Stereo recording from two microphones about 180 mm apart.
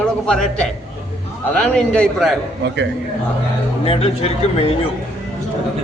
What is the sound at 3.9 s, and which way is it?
Speech, 30° left (ahead or behind).